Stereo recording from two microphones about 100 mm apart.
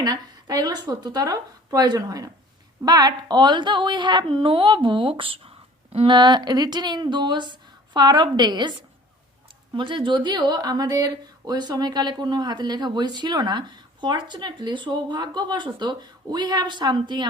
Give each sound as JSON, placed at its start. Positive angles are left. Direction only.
{"t": 0.0, "sound": "a woman's voice", "side_deg": -40}
{"t": 6.1, "sound": "a woman's voice", "side_deg": -45}
{"t": 9.7, "sound": "a woman's voice", "side_deg": -55}